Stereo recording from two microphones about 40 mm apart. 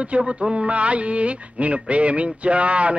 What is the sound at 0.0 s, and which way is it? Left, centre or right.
Speech, right.